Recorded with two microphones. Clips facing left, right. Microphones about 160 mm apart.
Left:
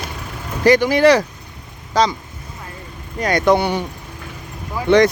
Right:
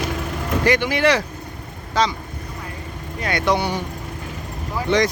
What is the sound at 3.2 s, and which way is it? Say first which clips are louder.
Speech: left 5 dB; 40° left (ahead or behind).